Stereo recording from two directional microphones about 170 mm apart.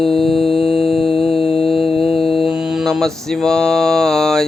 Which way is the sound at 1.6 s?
Centre (ahead or behind).